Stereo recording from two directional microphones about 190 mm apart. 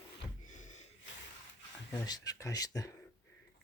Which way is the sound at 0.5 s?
40° left (ahead or behind).